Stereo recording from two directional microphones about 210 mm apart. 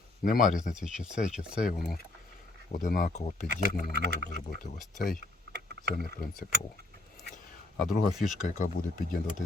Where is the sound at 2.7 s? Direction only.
40° left (ahead or behind).